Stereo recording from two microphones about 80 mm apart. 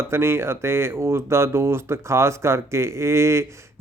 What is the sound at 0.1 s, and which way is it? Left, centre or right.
Speech, right.